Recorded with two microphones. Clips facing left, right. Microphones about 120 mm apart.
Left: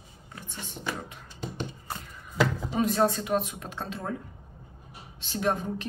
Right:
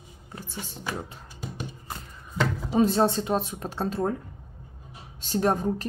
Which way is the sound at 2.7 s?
30° right (ahead or behind).